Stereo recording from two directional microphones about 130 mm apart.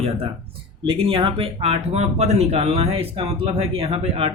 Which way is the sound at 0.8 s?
45° right (ahead or behind).